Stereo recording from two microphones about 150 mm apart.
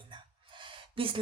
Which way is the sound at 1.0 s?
35° right (ahead or behind).